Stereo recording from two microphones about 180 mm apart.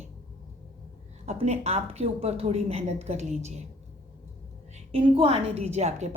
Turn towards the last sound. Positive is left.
turn(degrees=-40)  # may be behind; listen again after turning